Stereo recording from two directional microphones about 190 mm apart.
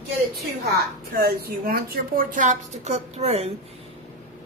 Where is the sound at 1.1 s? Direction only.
55° right (ahead or behind); by 3.5 s 35° right (ahead or behind).